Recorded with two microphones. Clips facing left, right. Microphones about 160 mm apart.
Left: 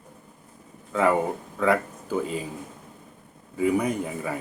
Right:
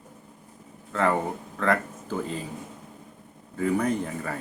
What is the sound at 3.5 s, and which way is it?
Speech, 10° left (ahead or behind).